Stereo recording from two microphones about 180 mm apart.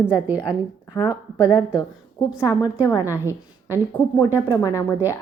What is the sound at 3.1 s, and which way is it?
Speech, 15° left (ahead or behind).